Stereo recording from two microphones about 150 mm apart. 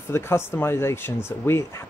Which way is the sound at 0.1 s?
15° left (ahead or behind).